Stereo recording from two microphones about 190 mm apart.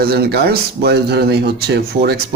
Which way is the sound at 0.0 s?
55° right (ahead or behind).